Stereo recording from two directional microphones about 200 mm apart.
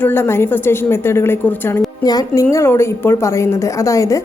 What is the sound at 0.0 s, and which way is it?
A woman's voice, 10° left (ahead or behind).